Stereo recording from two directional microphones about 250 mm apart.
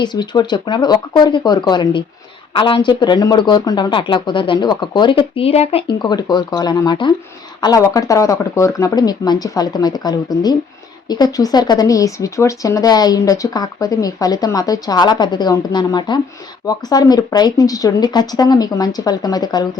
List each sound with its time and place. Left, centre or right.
0.0 s speech: centre